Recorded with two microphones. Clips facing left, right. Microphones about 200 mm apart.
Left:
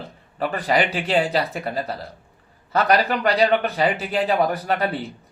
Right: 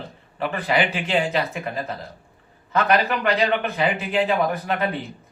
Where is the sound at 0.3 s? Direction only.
40° left (ahead or behind).